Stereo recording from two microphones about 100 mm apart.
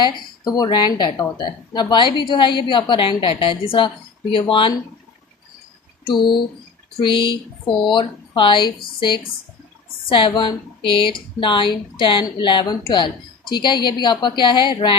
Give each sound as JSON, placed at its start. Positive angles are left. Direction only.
{"t": 0.0, "sound": "a woman's voice", "side_deg": 40}
{"t": 6.1, "sound": "a woman's voice", "side_deg": 50}